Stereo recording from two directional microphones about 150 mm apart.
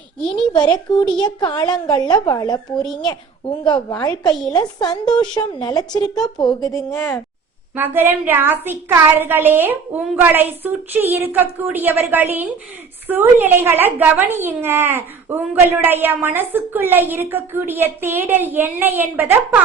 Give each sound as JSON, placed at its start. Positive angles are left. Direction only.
{"t": 0.5, "sound": "a woman's voice", "side_deg": 30}
{"t": 2.8, "sound": "a child's voice", "side_deg": 0}
{"t": 3.6, "sound": "a woman's voice", "side_deg": 30}
{"t": 6.9, "sound": "a child's voice", "side_deg": 0}
{"t": 7.8, "sound": "a child's voice", "side_deg": -15}